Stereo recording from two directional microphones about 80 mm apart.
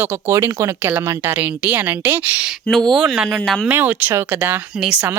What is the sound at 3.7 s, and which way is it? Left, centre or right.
Speech, right.